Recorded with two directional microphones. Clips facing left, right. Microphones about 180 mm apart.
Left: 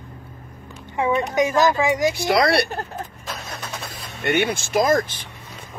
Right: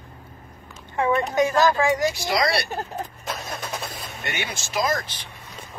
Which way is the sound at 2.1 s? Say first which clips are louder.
Left 5 dB; 60° left (ahead or behind).